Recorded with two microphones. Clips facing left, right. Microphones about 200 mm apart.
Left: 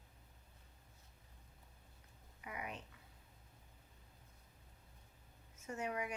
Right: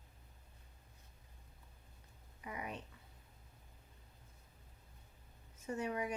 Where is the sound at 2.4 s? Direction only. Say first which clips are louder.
Right 2 dB; 30° right (ahead or behind).